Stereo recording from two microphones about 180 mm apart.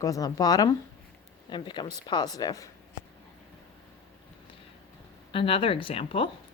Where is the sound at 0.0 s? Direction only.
20° left (ahead or behind).